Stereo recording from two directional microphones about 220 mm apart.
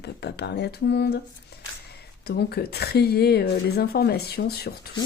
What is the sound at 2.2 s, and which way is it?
Speech, 50° left (ahead or behind).